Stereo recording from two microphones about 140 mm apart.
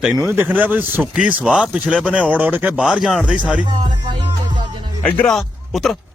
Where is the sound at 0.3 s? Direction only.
10° right (ahead or behind).